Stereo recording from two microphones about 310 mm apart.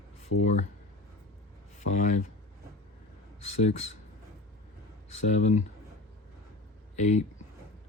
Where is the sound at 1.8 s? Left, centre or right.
Left.